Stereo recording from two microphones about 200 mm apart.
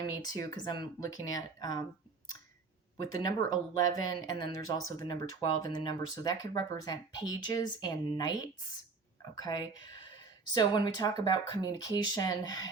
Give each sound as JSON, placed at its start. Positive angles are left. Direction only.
{"t": 0.3, "sound": "speech", "side_deg": 20}
{"t": 3.0, "sound": "speech", "side_deg": 20}